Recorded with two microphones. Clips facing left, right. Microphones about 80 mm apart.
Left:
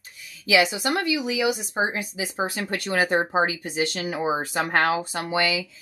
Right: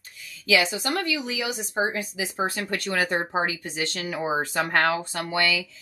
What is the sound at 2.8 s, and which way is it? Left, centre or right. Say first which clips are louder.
Speech: left 4 dB; left.